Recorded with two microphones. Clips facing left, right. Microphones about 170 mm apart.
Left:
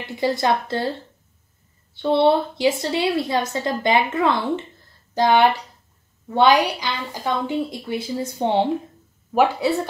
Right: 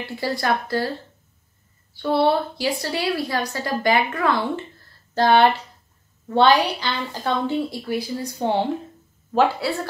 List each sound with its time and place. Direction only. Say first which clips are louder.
0.1 s a woman's voice: left 3 dB; 20° left (ahead or behind)
2.0 s a woman's voice: left 2 dB; 20° left (ahead or behind)